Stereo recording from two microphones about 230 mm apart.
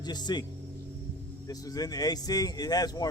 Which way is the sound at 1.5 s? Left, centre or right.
Centre.